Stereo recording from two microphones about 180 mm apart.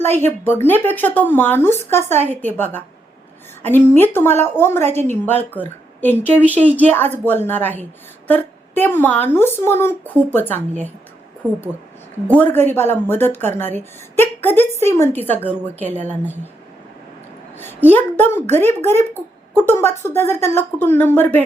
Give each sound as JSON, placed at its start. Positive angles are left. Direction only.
{"t": 0.0, "sound": "speech", "side_deg": 10}
{"t": 11.4, "sound": "speech", "side_deg": -5}
{"t": 12.3, "sound": "speech", "side_deg": 10}
{"t": 17.6, "sound": "speech", "side_deg": 10}